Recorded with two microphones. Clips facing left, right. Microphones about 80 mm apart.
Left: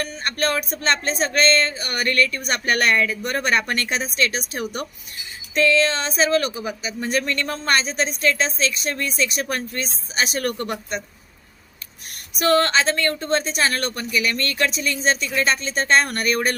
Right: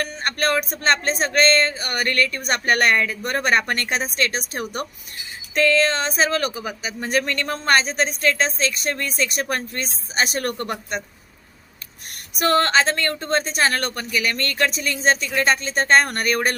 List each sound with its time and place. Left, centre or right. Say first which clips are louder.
0.3 s a woman's voice: right 2 dB; right
12.6 s a woman's voice: right 1 dB; right